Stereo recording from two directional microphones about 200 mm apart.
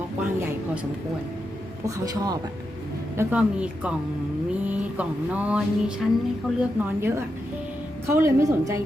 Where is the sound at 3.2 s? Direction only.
10° right (ahead or behind).